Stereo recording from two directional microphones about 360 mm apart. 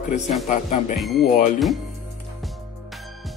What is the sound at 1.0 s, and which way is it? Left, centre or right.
Speech, centre.